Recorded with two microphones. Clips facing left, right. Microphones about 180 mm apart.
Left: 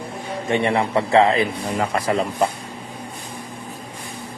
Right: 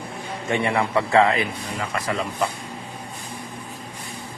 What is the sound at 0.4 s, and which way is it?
Speech, 25° left (ahead or behind).